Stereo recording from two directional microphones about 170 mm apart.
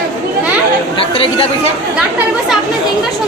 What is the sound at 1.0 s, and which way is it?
Speech, 30° left (ahead or behind).